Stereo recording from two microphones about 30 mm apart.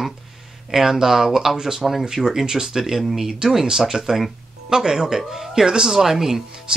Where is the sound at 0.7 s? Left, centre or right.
Centre.